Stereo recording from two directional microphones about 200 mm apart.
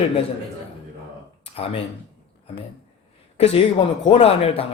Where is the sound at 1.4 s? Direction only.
30° left (ahead or behind).